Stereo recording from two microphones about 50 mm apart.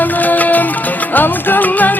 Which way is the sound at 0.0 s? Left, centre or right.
Left.